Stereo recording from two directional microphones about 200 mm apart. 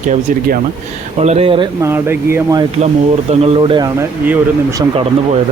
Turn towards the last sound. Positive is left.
turn(degrees=-25)  # may be behind; listen again after turning